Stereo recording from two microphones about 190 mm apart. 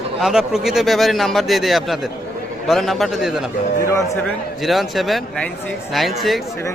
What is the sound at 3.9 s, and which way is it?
Speech, 15° left (ahead or behind).